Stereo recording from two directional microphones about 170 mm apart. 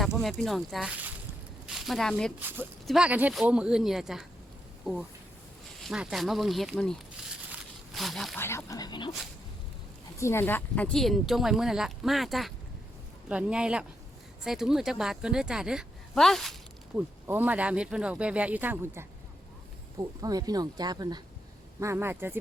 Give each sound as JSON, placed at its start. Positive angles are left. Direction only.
{"t": 0.2, "sound": "speech", "side_deg": 0}
{"t": 5.8, "sound": "speech", "side_deg": -5}
{"t": 7.5, "sound": "a sound", "side_deg": 0}
{"t": 8.4, "sound": "speech", "side_deg": 15}
{"t": 10.2, "sound": "a woman's voice", "side_deg": 15}
{"t": 17.2, "sound": "speech", "side_deg": -10}
{"t": 20.2, "sound": "speech", "side_deg": -20}